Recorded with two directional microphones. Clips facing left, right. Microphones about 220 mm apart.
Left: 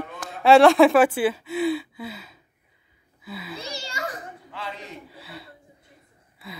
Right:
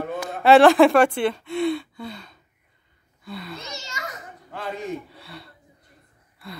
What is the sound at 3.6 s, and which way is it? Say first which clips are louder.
Speech: left 3 dB; 30° left (ahead or behind).